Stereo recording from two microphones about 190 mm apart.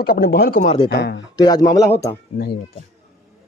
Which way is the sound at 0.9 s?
60° left (ahead or behind).